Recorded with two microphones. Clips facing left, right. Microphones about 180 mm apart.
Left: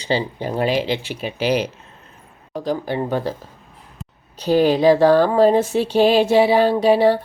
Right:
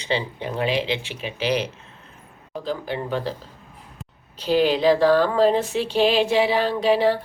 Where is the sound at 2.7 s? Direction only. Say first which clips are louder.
Left 5 dB; 45° left (ahead or behind).